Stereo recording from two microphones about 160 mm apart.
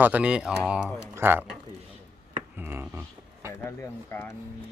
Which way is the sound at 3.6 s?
15° left (ahead or behind).